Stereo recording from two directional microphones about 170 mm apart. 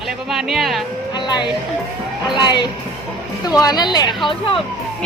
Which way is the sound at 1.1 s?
25° left (ahead or behind).